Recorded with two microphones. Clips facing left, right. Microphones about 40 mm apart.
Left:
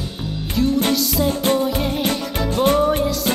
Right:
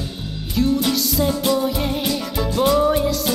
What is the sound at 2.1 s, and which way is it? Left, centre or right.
Music, left.